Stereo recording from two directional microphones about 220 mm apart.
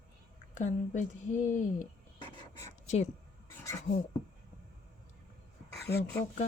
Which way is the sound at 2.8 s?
30° left (ahead or behind).